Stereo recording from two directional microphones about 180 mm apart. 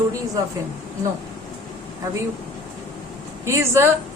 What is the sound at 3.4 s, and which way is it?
Speech, 15° right (ahead or behind).